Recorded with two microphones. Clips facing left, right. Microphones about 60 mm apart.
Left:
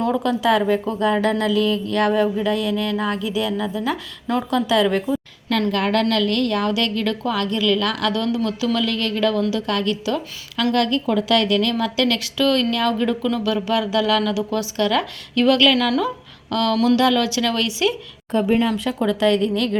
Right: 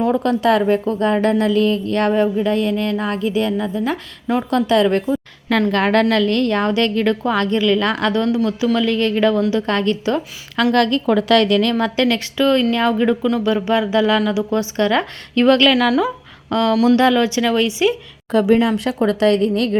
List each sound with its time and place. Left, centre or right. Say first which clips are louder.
0.2 s a woman's voice: right 3 dB; right
4.5 s a woman's voice: right 3 dB; right
16.5 s a sound: right 3 dB; right
16.9 s speech: right 3 dB; right
18.3 s speech: right 4 dB; right